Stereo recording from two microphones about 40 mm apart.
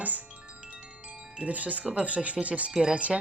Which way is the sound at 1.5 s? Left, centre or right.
Right.